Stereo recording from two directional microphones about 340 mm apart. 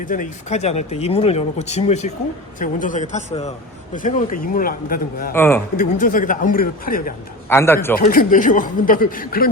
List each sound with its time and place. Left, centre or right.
0.0 s speech: left
5.3 s a man's voice: centre
5.7 s speech: left
7.5 s a man's voice: centre
7.9 s speech: left